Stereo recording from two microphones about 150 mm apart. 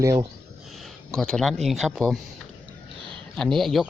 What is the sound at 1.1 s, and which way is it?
Speech, 5° left (ahead or behind).